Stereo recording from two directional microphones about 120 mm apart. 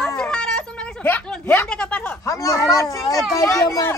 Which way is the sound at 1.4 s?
15° left (ahead or behind).